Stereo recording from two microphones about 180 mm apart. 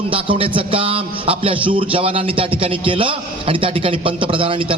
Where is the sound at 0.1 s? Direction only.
30° right (ahead or behind).